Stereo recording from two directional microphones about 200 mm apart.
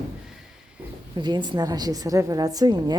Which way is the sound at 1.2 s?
20° right (ahead or behind).